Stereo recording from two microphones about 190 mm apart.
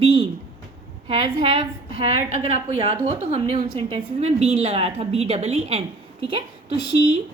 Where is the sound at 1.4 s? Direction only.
30° right (ahead or behind).